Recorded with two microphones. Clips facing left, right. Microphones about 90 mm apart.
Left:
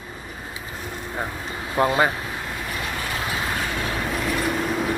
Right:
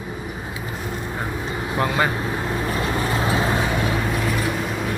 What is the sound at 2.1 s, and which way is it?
Vehicle, 30° right (ahead or behind).